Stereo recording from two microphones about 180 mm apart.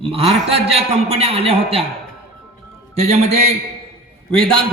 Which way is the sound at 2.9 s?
35° right (ahead or behind).